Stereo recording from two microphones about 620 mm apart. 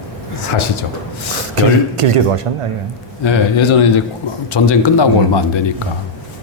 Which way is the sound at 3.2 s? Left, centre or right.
Left.